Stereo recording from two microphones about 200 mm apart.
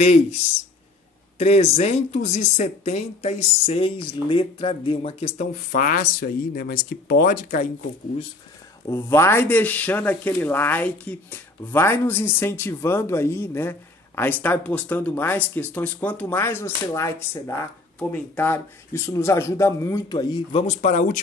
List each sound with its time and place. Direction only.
0.0 s speech: 35° left (ahead or behind)
1.4 s speech: 35° left (ahead or behind)
5.7 s speech: 45° left (ahead or behind)
8.8 s speech: 15° left (ahead or behind)
20.6 s speech: 35° left (ahead or behind)